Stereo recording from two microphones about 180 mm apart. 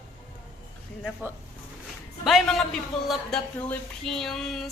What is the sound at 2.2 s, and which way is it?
Speech, centre (ahead or behind).